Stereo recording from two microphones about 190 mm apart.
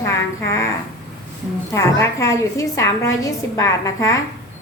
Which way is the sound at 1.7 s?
15° left (ahead or behind).